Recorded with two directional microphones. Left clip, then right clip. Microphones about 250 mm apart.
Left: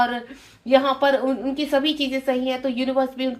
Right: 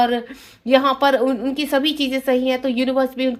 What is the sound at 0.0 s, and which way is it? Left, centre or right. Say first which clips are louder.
A woman's voice: right 4 dB; right.